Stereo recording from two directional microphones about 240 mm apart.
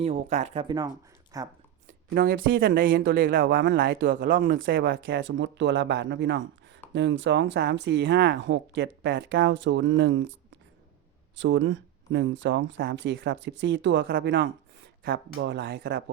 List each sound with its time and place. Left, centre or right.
0.0 s speech: right
2.1 s speech: right
2.6 s speech: right
11.3 s speech: right